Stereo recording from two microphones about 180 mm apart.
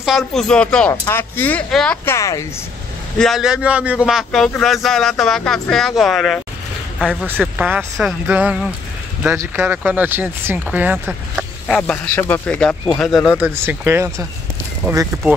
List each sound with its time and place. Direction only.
0.0 s speech: centre (ahead or behind)
2.0 s speech: 15° left (ahead or behind)
3.2 s speech: centre (ahead or behind); by 15.0 s 15° right (ahead or behind)